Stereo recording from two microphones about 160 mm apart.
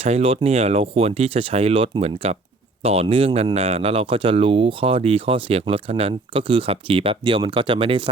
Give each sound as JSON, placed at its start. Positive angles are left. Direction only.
{"t": 0.0, "sound": "speech", "side_deg": -40}